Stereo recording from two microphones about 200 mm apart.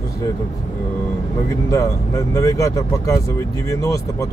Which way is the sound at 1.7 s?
15° left (ahead or behind).